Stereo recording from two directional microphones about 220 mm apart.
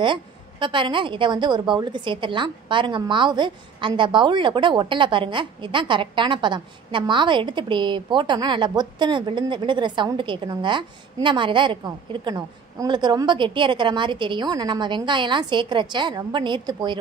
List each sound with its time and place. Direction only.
0.0 s a woman's voice: 20° right (ahead or behind)